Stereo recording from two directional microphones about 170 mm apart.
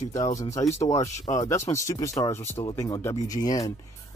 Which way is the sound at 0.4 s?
20° left (ahead or behind).